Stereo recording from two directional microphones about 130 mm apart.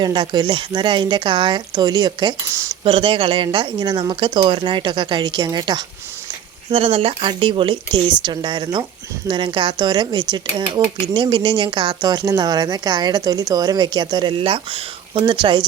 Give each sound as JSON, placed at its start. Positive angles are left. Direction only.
{"t": 0.0, "sound": "speech", "side_deg": -35}
{"t": 2.8, "sound": "speech", "side_deg": -45}
{"t": 6.7, "sound": "speech", "side_deg": -45}